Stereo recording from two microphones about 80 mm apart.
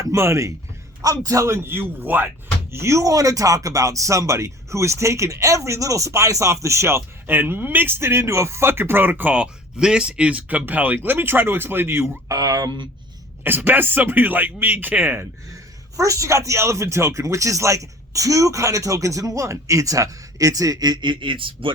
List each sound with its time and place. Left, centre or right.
0.0 s speech: right
1.5 s speech: right
2.7 s speech: right
12.3 s speech: right
13.4 s speech: right
16.0 s speech: right